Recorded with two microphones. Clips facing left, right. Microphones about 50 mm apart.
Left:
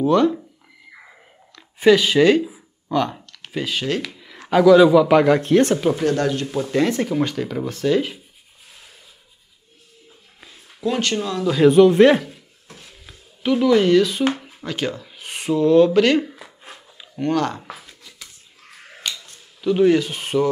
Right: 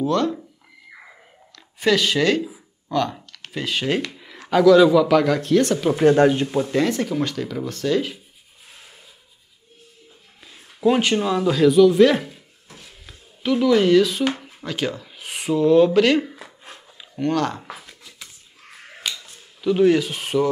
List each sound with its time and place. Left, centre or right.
0.0 s speech: centre
1.5 s speech: centre
2.4 s a sound: centre
4.5 s speech: centre; by 5.8 s left
5.9 s speech: right
6.4 s speech: centre
6.7 s speech: centre
10.5 s speech: centre
11.6 s speech: left
12.8 s a sound: centre
17.2 s speech: centre
18.9 s camera: centre